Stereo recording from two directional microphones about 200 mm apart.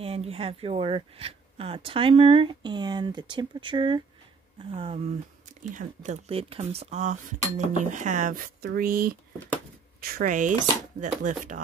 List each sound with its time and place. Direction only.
0.0 s speech: 30° right (ahead or behind)
5.6 s speech: 40° right (ahead or behind)